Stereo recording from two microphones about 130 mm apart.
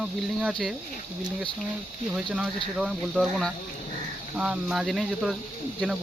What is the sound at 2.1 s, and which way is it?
Speech, 10° right (ahead or behind).